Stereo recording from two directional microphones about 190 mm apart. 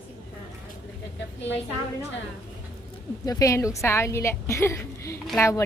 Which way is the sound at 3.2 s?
15° left (ahead or behind).